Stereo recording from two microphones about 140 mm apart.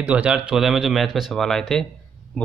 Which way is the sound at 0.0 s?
10° right (ahead or behind).